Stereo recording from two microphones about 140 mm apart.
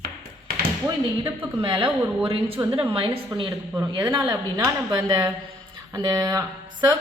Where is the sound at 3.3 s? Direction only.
30° right (ahead or behind).